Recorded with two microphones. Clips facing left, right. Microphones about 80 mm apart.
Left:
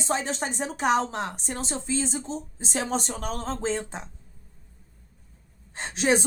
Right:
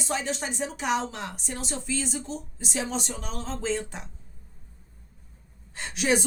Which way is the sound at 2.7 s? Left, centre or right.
Left.